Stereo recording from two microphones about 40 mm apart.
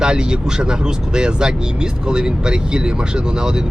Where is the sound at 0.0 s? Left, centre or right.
Centre.